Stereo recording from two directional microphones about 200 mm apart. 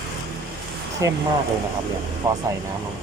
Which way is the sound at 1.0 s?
15° right (ahead or behind).